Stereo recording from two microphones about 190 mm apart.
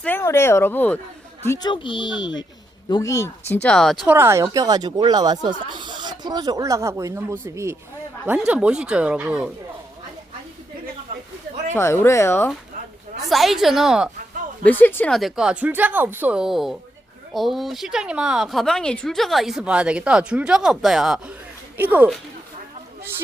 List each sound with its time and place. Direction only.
0.0 s speech: 10° left (ahead or behind)
1.5 s speech: 20° left (ahead or behind); by 4.1 s centre (ahead or behind)
4.1 s speech: 15° right (ahead or behind)
11.7 s speech: 10° left (ahead or behind)
13.2 s speech: centre (ahead or behind)
14.6 s speech: 10° left (ahead or behind); by 22.2 s 10° right (ahead or behind)